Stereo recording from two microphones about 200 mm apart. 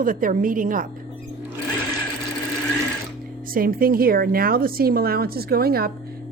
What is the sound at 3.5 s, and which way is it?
A woman's voice, 45° right (ahead or behind).